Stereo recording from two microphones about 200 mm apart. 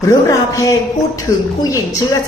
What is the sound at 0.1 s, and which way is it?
Speech, 15° left (ahead or behind).